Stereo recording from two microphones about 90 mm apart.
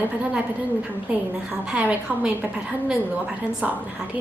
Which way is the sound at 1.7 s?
15° right (ahead or behind).